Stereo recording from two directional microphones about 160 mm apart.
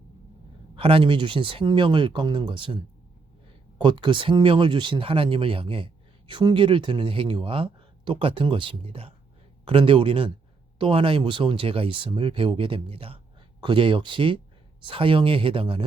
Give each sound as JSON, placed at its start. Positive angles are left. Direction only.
{"t": 0.8, "sound": "speech", "side_deg": -35}
{"t": 3.8, "sound": "speech", "side_deg": -30}